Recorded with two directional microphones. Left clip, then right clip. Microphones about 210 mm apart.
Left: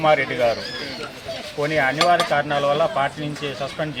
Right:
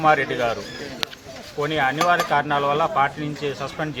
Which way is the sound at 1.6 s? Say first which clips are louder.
Left 1 dB; 15° right (ahead or behind).